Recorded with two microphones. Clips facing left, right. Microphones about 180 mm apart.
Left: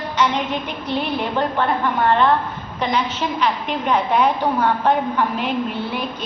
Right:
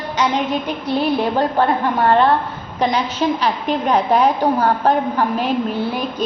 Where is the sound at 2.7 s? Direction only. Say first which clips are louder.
Right 3 dB; 35° right (ahead or behind).